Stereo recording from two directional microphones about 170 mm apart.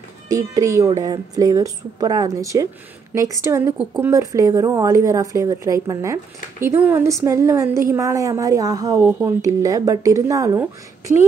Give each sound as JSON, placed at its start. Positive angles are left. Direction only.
{"t": 0.3, "sound": "a woman's voice", "side_deg": -20}
{"t": 3.7, "sound": "a woman's voice", "side_deg": -5}
{"t": 4.1, "sound": "a woman's voice", "side_deg": -20}